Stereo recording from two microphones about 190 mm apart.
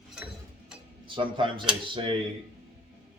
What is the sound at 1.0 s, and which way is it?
Speech, 25° right (ahead or behind).